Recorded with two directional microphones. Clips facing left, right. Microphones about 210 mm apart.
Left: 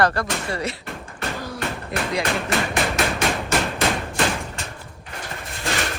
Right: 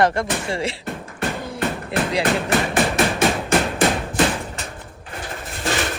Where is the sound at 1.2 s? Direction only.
25° right (ahead or behind).